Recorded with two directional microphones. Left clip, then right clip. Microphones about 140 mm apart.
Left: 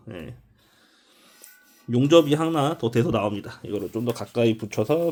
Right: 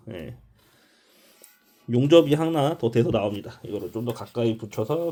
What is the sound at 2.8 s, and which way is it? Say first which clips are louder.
Speech: even; 25° left (ahead or behind).